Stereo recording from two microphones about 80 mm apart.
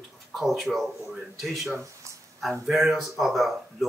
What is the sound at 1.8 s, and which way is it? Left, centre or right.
Speech, right.